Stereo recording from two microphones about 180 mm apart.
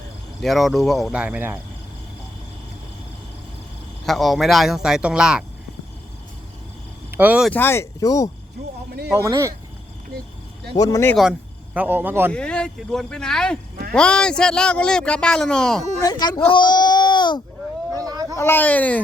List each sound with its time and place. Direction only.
0.4 s speech: centre (ahead or behind)
4.0 s speech: centre (ahead or behind)
7.1 s speech: 10° right (ahead or behind)
7.5 s speech: 15° left (ahead or behind)
9.1 s speech: 15° right (ahead or behind)
10.8 s speech: 20° left (ahead or behind)
11.2 s speech: 5° right (ahead or behind)
12.3 s speech: 5° left (ahead or behind)
16.0 s speech: 20° left (ahead or behind)
17.9 s a sound: 20° right (ahead or behind)
18.3 s speech: 10° left (ahead or behind)